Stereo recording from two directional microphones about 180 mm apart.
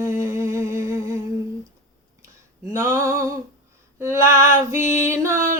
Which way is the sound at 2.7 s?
15° right (ahead or behind).